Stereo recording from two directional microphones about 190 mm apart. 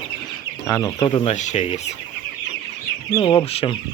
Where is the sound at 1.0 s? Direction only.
30° left (ahead or behind).